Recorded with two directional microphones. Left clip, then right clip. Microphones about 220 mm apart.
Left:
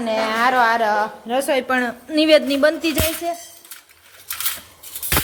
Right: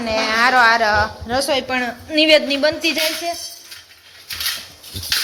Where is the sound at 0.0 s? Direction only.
15° left (ahead or behind); by 3.3 s 30° left (ahead or behind).